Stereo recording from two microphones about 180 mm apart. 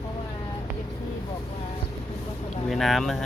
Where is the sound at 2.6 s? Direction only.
Centre (ahead or behind).